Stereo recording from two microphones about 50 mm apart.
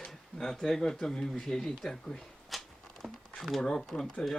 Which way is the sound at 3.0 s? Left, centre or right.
Centre.